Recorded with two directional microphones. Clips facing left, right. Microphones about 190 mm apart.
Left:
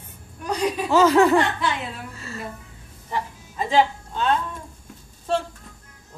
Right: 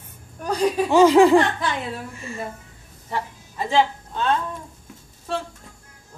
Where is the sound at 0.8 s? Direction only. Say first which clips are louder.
Right 3 dB; 15° right (ahead or behind).